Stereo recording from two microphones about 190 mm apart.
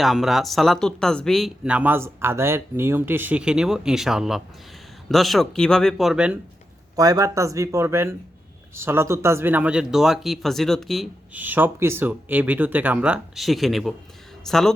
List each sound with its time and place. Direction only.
0.0 s speech: centre (ahead or behind)
6.9 s speech: 20° right (ahead or behind); by 14.7 s centre (ahead or behind)